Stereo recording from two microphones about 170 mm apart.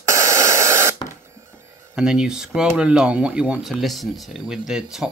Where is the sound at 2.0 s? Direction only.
5° right (ahead or behind).